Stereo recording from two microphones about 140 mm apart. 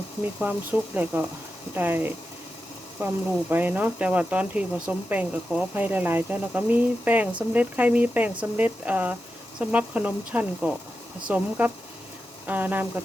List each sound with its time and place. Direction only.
0.3 s speech: 10° right (ahead or behind)